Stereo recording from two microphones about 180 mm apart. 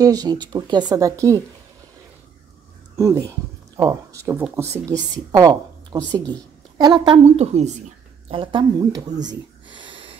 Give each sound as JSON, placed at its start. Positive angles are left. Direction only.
{"t": 0.0, "sound": "speech", "side_deg": -20}
{"t": 3.0, "sound": "speech", "side_deg": -15}
{"t": 7.3, "sound": "a woman's voice", "side_deg": -35}
{"t": 9.8, "sound": "wheeze", "side_deg": -30}